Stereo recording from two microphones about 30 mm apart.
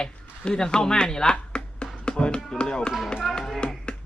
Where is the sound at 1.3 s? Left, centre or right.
Left.